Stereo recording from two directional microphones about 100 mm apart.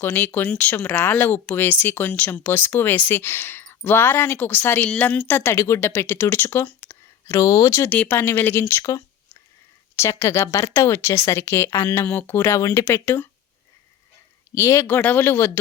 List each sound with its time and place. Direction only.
0.0 s speech: 20° left (ahead or behind)
7.9 s speech: 15° left (ahead or behind)
14.5 s speech: 30° left (ahead or behind)